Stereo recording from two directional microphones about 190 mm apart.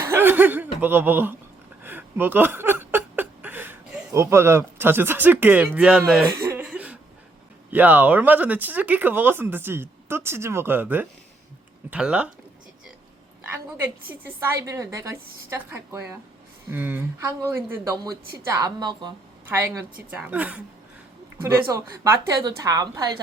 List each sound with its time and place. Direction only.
0.1 s chuckle: 10° right (ahead or behind)
1.8 s a sound: 10° right (ahead or behind)
7.7 s speech: 10° right (ahead or behind)
13.5 s a woman's voice: 10° right (ahead or behind)
21.7 s speech: 15° right (ahead or behind)